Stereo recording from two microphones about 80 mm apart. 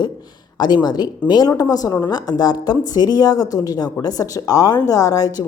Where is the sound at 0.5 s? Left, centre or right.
Left.